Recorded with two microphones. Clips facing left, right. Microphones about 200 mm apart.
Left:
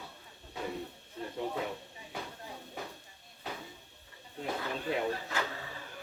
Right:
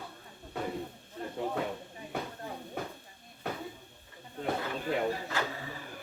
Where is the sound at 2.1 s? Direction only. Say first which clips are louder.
Right 5 dB; 55° right (ahead or behind).